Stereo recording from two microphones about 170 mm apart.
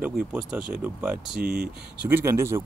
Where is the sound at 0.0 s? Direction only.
10° right (ahead or behind).